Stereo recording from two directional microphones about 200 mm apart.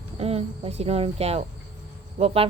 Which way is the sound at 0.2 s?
30° right (ahead or behind).